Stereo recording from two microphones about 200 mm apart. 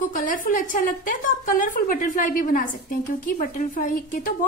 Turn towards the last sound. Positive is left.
turn(degrees=45)  # may be behind; listen again after turning